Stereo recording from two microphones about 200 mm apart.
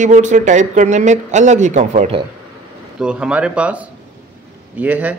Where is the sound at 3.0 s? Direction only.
5° right (ahead or behind).